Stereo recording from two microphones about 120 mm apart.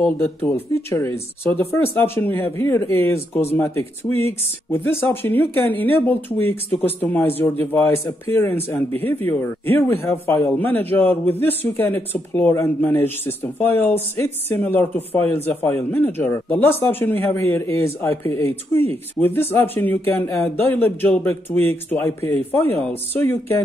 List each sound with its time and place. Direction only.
0.0 s a man's voice: 20° left (ahead or behind)